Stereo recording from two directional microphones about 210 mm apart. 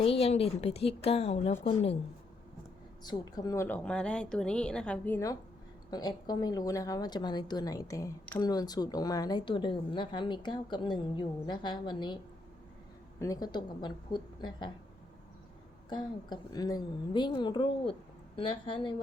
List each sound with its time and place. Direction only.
0.0 s speech: 30° left (ahead or behind)
3.0 s speech: 20° left (ahead or behind)
15.9 s speech: 20° left (ahead or behind)